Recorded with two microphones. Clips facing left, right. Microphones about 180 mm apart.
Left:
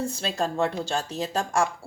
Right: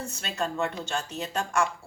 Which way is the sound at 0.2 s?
35° left (ahead or behind).